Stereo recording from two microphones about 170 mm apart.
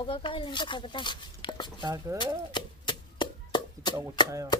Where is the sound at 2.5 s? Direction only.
25° left (ahead or behind).